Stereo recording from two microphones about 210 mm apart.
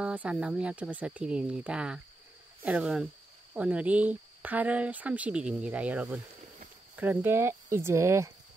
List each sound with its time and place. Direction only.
0.0 s speech: 5° right (ahead or behind)